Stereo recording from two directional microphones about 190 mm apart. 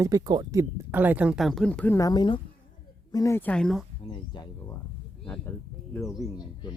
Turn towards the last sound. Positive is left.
turn(degrees=20)  # may be behind; listen again after turning